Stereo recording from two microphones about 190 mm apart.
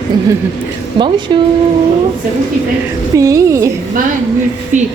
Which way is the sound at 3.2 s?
15° right (ahead or behind).